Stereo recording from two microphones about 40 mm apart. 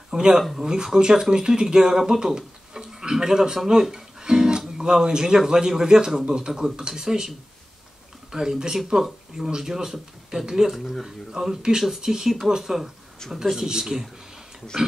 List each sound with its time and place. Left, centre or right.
0.1 s speech: centre